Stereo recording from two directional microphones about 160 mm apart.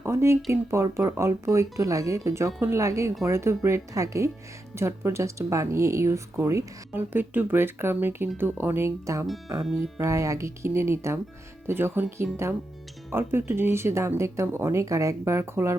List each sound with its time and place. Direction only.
0.0 s speech: 15° right (ahead or behind)